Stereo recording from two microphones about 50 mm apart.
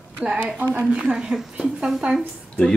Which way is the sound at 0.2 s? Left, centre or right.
Right.